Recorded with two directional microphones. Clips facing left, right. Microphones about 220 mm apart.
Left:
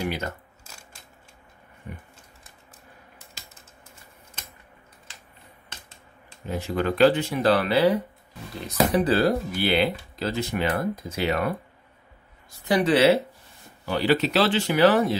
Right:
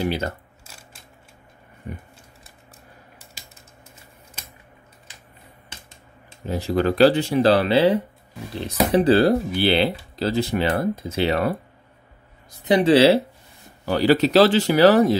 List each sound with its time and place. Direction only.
0.0 s speech: 30° right (ahead or behind)
6.4 s speech: 35° right (ahead or behind)
13.8 s speech: 40° right (ahead or behind)